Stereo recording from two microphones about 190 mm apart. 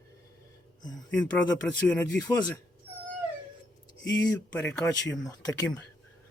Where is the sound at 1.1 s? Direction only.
5° left (ahead or behind).